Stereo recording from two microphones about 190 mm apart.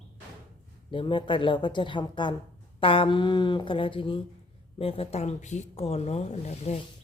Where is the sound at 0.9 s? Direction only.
25° left (ahead or behind).